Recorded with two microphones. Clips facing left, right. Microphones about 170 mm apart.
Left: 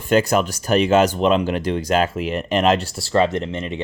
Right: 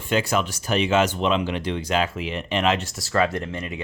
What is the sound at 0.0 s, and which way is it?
Speech, 45° left (ahead or behind).